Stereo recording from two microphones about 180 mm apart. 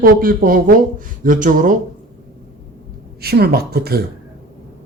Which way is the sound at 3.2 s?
60° right (ahead or behind).